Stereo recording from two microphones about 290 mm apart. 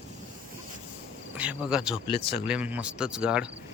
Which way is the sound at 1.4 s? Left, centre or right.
Centre.